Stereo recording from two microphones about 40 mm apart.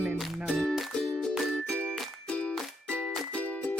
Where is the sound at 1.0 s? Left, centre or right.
Centre.